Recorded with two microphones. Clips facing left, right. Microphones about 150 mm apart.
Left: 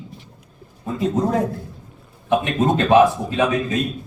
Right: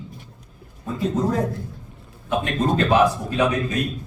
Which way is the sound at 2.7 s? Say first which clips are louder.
Left 4 dB; 20° left (ahead or behind).